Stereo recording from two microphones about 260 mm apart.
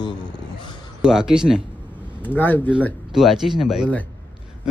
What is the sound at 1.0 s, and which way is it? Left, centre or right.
Speech, centre.